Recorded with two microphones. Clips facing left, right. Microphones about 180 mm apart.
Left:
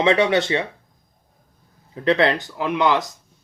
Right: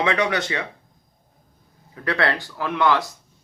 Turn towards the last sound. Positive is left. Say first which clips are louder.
# left 1 dB
turn(degrees=20)  # may be behind; listen again after turning